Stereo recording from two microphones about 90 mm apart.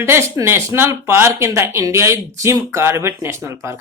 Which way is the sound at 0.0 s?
30° right (ahead or behind).